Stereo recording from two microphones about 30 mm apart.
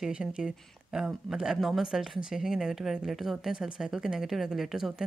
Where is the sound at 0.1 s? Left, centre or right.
Right.